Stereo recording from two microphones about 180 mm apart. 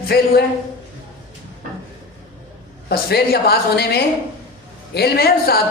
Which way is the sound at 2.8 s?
60° left (ahead or behind).